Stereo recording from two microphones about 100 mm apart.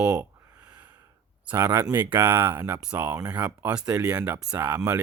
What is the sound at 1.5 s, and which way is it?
Speech, 25° right (ahead or behind).